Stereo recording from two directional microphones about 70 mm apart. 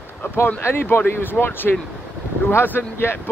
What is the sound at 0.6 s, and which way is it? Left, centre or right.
Speech, left.